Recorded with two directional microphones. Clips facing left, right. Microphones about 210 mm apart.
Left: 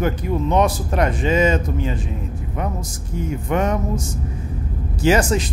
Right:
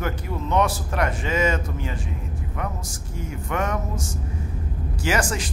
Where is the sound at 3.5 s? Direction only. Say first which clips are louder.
Left 5 dB; 20° left (ahead or behind).